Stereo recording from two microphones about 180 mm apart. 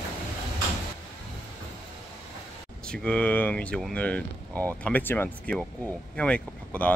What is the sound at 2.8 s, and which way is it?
Speech, 5° left (ahead or behind).